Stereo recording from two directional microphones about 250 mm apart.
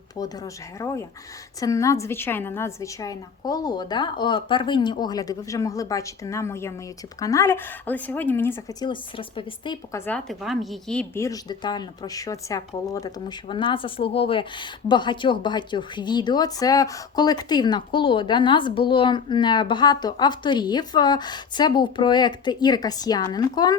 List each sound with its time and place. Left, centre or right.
0.2 s speech: centre
10.1 s speech: centre